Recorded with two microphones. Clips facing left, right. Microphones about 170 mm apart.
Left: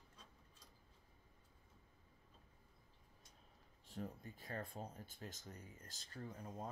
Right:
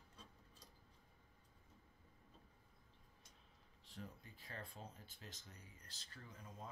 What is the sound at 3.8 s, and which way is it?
Speech, 45° left (ahead or behind).